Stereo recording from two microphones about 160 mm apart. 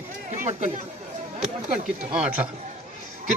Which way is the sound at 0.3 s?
45° right (ahead or behind).